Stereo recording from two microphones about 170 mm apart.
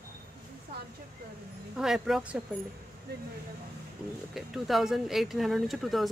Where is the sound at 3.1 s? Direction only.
70° right (ahead or behind).